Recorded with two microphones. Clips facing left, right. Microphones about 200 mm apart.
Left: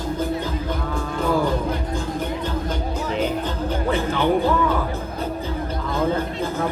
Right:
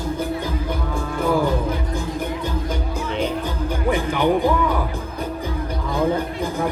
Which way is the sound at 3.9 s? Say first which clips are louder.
Right 1 dB; 15° right (ahead or behind).